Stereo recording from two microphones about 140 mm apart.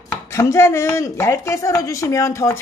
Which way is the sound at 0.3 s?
20° left (ahead or behind).